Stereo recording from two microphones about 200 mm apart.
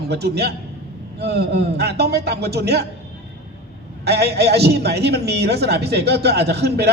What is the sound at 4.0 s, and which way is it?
A man's voice, 55° right (ahead or behind).